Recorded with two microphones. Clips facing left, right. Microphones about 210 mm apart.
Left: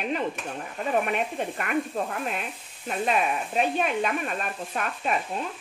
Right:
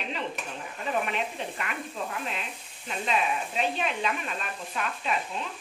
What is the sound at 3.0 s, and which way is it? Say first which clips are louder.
A woman's voice: left 3 dB; 50° left (ahead or behind).